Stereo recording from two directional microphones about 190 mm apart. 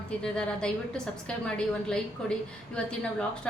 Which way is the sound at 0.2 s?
5° left (ahead or behind).